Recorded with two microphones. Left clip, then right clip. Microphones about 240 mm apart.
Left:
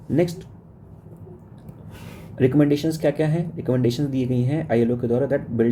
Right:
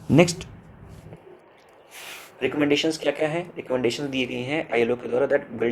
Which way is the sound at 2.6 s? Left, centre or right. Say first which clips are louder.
Right 2 dB; centre.